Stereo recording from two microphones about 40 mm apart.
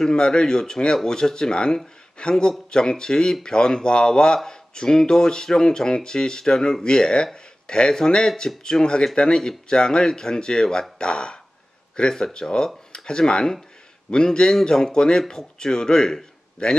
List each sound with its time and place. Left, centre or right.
0.0 s speech: left